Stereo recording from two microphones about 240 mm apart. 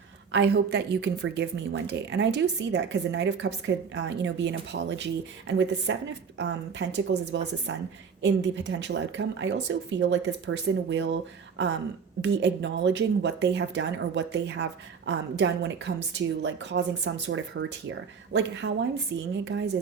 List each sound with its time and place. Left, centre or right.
0.3 s speech: right
19.1 s speech: right